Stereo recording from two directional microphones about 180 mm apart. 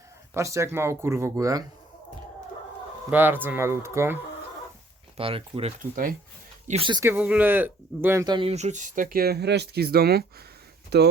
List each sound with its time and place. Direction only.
0.3 s speech: 15° right (ahead or behind)
3.1 s speech: 10° right (ahead or behind)
5.1 s speech: 30° right (ahead or behind)
5.8 s speech: 50° right (ahead or behind)
6.7 s speech: 30° right (ahead or behind)
7.0 s speech: 10° right (ahead or behind); by 9.0 s 45° right (ahead or behind)
9.1 s speech: 60° right (ahead or behind)